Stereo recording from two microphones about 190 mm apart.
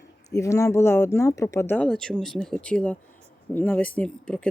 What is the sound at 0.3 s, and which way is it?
Speech, 15° left (ahead or behind).